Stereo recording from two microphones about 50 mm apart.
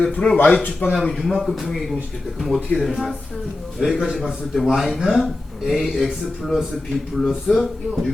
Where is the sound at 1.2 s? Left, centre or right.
Centre.